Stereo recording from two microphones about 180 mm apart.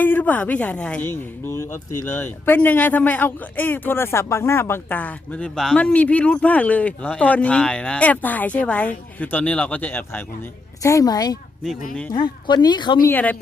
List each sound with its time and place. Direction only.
0.0 s speech: 10° left (ahead or behind)
13.1 s speech: 10° left (ahead or behind)